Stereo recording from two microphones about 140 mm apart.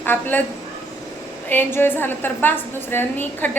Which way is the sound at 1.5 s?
15° left (ahead or behind).